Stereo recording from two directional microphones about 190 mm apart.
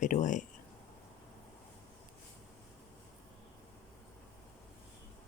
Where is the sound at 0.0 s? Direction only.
40° left (ahead or behind).